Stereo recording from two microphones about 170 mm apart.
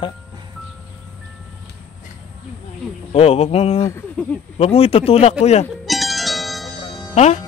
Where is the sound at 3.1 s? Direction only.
35° left (ahead or behind).